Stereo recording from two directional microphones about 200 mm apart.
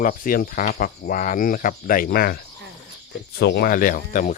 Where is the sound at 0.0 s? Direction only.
45° left (ahead or behind).